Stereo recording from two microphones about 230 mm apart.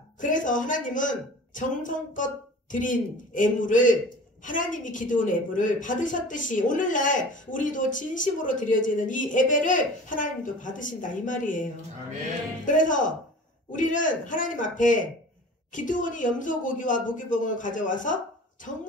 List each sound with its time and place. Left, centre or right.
0.2 s a woman's voice: left
12.6 s a woman's voice: left